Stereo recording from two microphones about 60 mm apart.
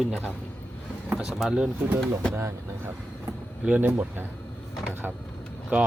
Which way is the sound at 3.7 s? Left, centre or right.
Right.